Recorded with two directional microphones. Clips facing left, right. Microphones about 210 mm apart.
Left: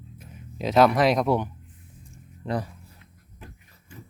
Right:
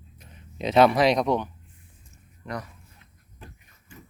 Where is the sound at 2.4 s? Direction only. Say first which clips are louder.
Left 6 dB; 30° left (ahead or behind).